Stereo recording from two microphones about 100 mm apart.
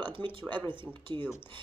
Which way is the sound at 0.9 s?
55° right (ahead or behind).